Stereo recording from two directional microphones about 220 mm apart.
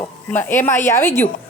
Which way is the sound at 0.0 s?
10° left (ahead or behind).